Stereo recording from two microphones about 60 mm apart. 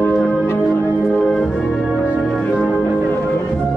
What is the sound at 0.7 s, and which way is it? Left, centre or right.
Music, left.